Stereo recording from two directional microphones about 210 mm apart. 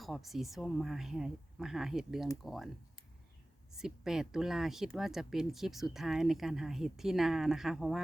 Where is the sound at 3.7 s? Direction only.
Centre (ahead or behind).